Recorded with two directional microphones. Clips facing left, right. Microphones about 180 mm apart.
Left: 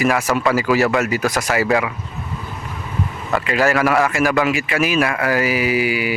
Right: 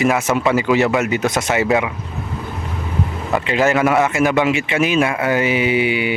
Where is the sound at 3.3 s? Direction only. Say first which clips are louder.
Right 1 dB; 20° right (ahead or behind).